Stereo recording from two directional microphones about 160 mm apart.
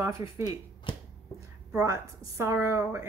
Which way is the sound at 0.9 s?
30° left (ahead or behind).